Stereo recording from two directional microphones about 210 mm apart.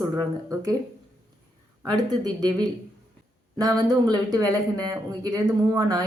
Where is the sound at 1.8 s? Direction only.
20° right (ahead or behind).